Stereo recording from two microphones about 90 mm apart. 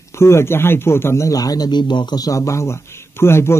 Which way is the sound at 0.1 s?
30° left (ahead or behind).